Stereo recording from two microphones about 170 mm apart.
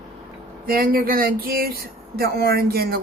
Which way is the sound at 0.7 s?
60° right (ahead or behind).